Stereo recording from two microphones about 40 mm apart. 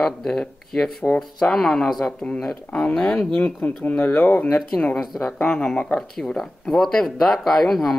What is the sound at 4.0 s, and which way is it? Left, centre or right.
Speech, left.